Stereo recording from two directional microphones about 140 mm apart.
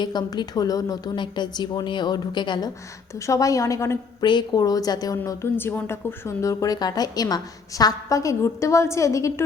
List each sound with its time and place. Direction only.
0.0 s a woman's voice: 30° left (ahead or behind)
4.2 s a woman's voice: 30° left (ahead or behind)